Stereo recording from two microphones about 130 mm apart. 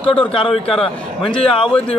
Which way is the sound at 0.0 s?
10° left (ahead or behind).